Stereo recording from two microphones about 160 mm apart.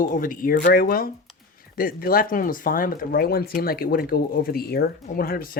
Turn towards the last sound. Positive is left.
turn(degrees=65)  # may be behind; listen again after turning